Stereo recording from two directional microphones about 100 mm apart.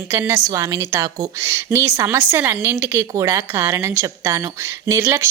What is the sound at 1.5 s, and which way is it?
A woman's voice, 25° right (ahead or behind).